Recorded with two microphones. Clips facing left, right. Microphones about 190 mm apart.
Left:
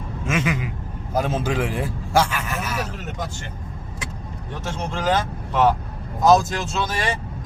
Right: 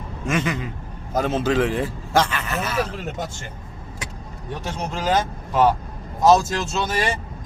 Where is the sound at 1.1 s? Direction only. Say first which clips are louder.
Right 2 dB; 10° left (ahead or behind).